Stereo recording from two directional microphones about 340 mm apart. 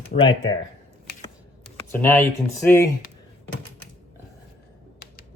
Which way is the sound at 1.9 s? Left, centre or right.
Centre.